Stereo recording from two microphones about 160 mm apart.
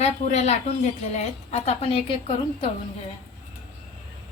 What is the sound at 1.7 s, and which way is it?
A woman's voice, 35° left (ahead or behind).